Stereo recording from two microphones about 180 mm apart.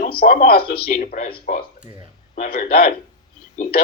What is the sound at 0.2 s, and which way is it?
Speech, 45° left (ahead or behind).